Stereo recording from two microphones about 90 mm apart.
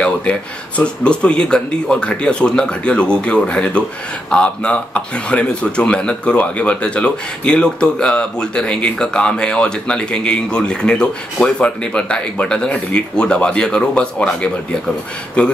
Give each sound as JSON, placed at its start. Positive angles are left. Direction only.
{"t": 0.0, "sound": "a man's voice", "side_deg": 15}